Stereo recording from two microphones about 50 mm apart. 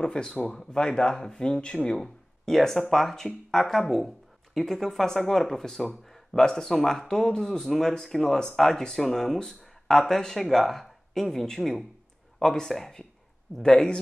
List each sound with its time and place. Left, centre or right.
0.0 s speech: centre
13.6 s speech: centre